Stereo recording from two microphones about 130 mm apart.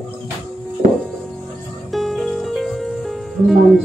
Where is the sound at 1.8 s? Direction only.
Centre (ahead or behind).